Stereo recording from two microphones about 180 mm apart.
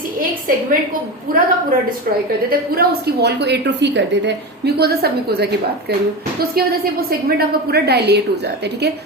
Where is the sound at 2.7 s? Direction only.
65° right (ahead or behind).